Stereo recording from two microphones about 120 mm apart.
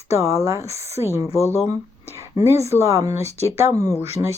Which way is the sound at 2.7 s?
25° right (ahead or behind).